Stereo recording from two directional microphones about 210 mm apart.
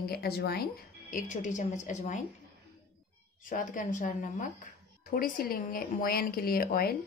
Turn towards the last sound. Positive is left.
turn(degrees=45)  # may be behind; listen again after turning